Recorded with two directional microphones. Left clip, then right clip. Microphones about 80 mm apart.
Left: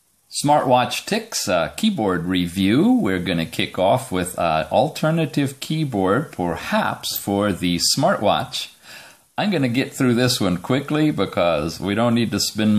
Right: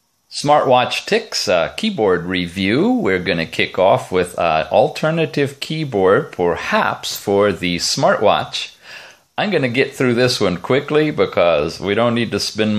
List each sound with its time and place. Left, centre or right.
0.4 s speech: left